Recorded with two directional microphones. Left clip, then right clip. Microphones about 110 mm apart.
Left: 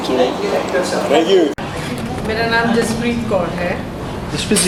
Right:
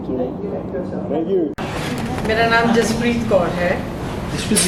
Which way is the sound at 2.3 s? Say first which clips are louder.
Right 1 dB; 10° right (ahead or behind).